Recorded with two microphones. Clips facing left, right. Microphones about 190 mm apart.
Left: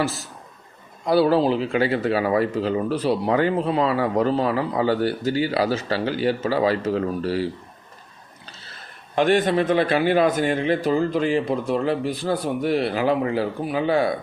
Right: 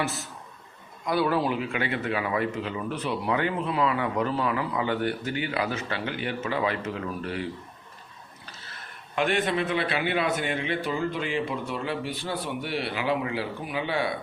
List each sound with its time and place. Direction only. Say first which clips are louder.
1.0 s speech: left 7 dB; 30° left (ahead or behind)
9.1 s speech: left 7 dB; 35° left (ahead or behind)